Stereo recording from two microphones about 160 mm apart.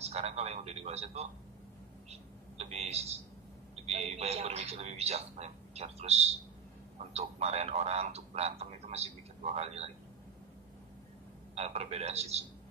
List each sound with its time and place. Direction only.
0.0 s a man's voice: 40° right (ahead or behind)
11.5 s speech: 40° right (ahead or behind)